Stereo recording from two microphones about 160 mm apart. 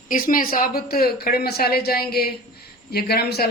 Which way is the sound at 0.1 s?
55° left (ahead or behind).